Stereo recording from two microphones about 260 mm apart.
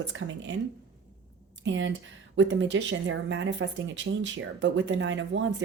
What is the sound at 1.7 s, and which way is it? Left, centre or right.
Speech, right.